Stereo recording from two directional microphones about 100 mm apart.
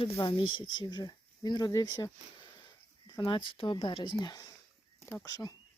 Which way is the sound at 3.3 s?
55° left (ahead or behind).